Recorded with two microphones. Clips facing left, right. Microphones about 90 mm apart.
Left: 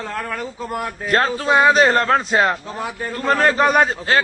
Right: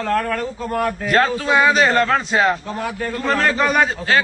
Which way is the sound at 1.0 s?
35° left (ahead or behind).